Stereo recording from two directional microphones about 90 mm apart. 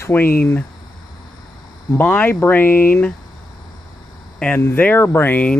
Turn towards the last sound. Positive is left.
turn(degrees=20)  # may be behind; listen again after turning